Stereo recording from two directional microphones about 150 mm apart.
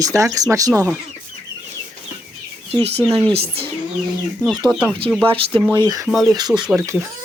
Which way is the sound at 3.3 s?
40° right (ahead or behind).